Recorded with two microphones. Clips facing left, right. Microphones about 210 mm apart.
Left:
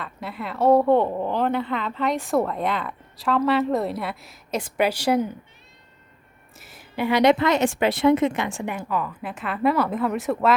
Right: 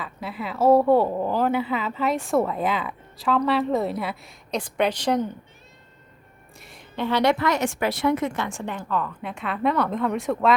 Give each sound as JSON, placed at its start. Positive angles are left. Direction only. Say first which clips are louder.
{"t": 0.0, "sound": "a woman's voice", "louder": "right 1 dB", "side_deg": 0}
{"t": 6.6, "sound": "a woman's voice", "louder": "left 2 dB", "side_deg": 5}